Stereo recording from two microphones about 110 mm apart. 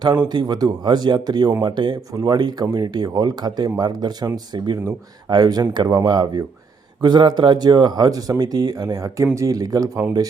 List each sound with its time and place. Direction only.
0.0 s speech: 40° right (ahead or behind)